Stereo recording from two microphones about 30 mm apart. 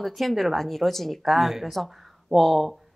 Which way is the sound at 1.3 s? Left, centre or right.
Centre.